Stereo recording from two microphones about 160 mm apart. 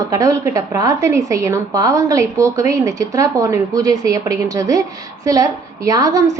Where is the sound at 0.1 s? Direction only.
20° right (ahead or behind).